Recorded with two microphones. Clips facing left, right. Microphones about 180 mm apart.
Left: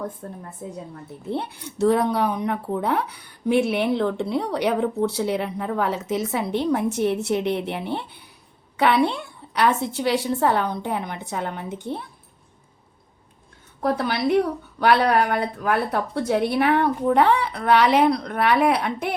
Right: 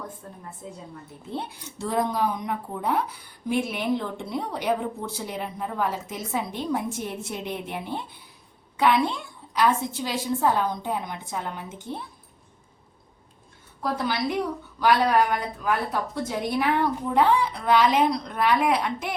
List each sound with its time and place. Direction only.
0.2 s a woman's voice: 50° left (ahead or behind)
1.3 s speech: 65° left (ahead or behind)
13.8 s a woman's voice: 60° left (ahead or behind)